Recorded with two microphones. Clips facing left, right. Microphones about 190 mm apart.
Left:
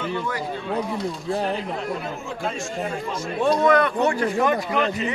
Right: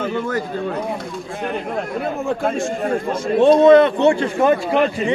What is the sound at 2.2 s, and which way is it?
Speech, 55° right (ahead or behind).